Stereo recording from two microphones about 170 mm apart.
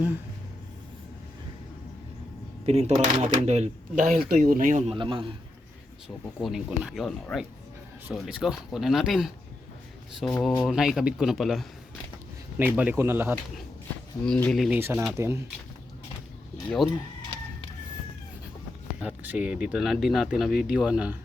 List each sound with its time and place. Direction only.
2.6 s speech: 40° right (ahead or behind)
4.0 s speech: 60° right (ahead or behind)
4.9 s speech: 30° right (ahead or behind)
6.4 s speech: 5° right (ahead or behind)
14.3 s speech: 5° left (ahead or behind)
14.8 s speech: 15° right (ahead or behind)
16.6 s speech: centre (ahead or behind)
18.9 s speech: 10° right (ahead or behind)